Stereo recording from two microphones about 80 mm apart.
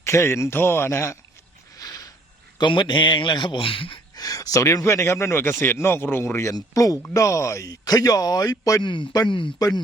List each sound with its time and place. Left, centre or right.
0.0 s speech: left
1.7 s a sound: left
2.6 s a man's voice: left
4.1 s speech: left
6.5 s speech: left
8.8 s a man's voice: left